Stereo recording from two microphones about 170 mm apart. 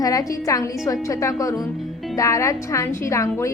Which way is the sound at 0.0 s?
20° left (ahead or behind).